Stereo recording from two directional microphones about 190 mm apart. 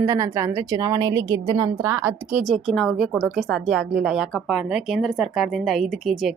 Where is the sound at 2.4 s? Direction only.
Centre (ahead or behind).